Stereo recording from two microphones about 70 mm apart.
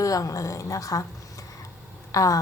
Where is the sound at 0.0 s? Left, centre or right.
Left.